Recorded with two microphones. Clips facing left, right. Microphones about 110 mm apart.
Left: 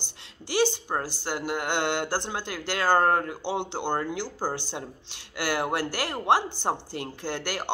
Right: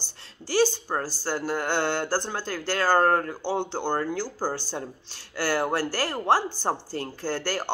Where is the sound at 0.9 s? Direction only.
20° left (ahead or behind).